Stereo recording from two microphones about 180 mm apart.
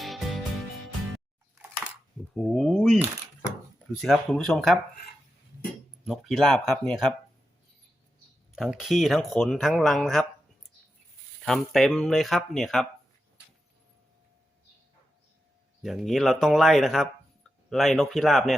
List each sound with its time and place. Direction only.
0.0 s music: centre (ahead or behind)
2.3 s a sound: centre (ahead or behind)
4.0 s speech: centre (ahead or behind)
6.1 s speech: centre (ahead or behind)
8.5 s speech: centre (ahead or behind)
11.4 s speech: centre (ahead or behind)
15.8 s speech: centre (ahead or behind)